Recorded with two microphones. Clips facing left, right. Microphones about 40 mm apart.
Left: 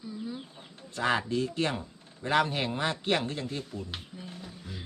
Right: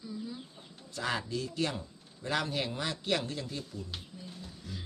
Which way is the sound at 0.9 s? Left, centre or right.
Left.